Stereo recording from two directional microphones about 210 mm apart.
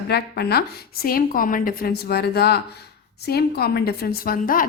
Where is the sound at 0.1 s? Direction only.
50° left (ahead or behind).